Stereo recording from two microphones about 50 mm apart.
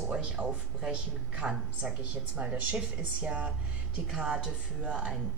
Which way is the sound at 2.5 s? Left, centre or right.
Right.